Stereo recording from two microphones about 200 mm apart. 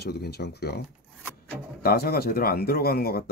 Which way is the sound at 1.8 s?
50° left (ahead or behind).